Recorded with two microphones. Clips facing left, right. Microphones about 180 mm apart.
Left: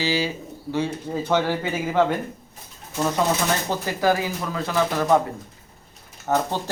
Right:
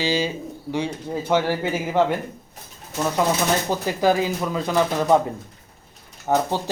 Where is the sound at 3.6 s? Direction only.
15° right (ahead or behind).